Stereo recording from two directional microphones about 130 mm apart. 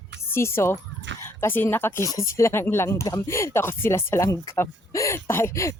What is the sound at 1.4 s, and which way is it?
Speech, 15° left (ahead or behind).